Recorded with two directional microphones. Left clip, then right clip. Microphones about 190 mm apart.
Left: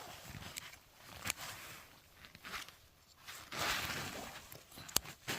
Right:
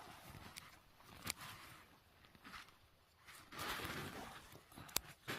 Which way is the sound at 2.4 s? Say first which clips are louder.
Left 9 dB; 60° left (ahead or behind).